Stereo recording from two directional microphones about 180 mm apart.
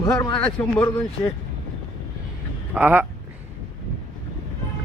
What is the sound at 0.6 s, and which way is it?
Speech, 10° left (ahead or behind).